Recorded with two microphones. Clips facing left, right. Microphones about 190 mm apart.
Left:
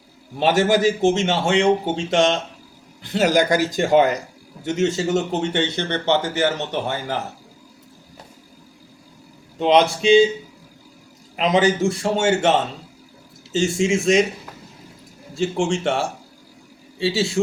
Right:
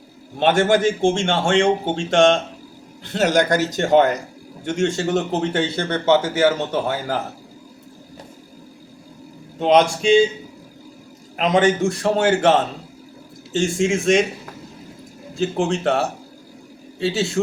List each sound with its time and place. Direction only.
0.3 s speech: 5° left (ahead or behind)
10.0 s a man's voice: 45° right (ahead or behind)
11.3 s speech: centre (ahead or behind)
15.4 s speech: centre (ahead or behind)
17.0 s speech: centre (ahead or behind)